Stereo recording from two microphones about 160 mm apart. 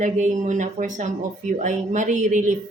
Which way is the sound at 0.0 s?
50° right (ahead or behind).